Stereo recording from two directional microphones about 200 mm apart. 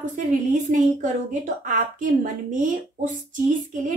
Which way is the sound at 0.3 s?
40° right (ahead or behind).